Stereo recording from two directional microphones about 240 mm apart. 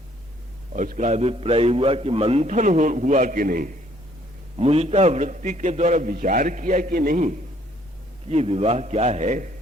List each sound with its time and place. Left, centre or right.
0.7 s a man's voice: right
4.5 s a man's voice: right